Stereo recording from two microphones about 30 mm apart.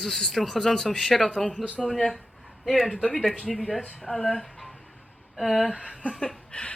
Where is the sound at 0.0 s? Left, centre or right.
Centre.